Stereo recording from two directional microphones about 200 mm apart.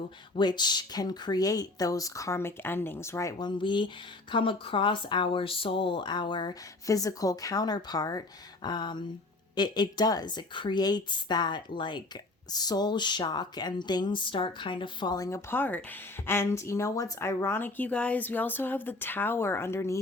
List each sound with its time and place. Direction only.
0.3 s speech: 20° left (ahead or behind)